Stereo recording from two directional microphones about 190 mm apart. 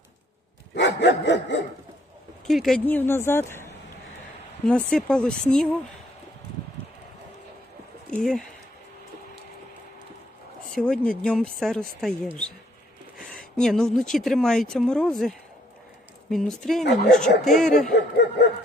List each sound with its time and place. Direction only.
0.7 s dog: 65° left (ahead or behind)
2.5 s speech: centre (ahead or behind)
8.1 s speech: centre (ahead or behind)
10.8 s speech: 5° left (ahead or behind)
17.9 s speech: 65° left (ahead or behind)